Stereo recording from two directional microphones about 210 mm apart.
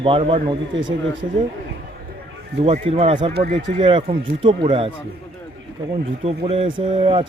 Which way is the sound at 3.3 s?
50° right (ahead or behind).